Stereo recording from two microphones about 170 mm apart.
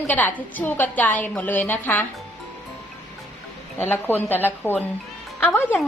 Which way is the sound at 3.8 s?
10° left (ahead or behind).